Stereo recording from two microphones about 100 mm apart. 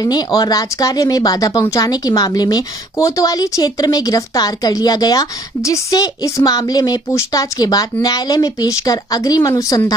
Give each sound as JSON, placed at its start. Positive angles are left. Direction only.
{"t": 0.0, "sound": "speech", "side_deg": 40}